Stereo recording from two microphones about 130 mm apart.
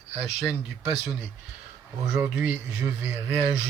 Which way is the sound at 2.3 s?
10° right (ahead or behind).